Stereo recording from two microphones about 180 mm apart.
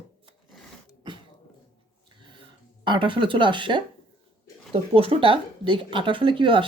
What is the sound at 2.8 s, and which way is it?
Speech, 25° right (ahead or behind).